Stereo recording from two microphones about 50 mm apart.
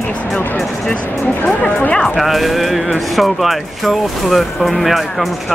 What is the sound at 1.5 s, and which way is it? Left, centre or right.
Speech, left.